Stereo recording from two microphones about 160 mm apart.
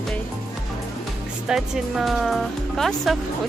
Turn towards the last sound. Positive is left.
turn(degrees=0)  # may be behind; listen again after turning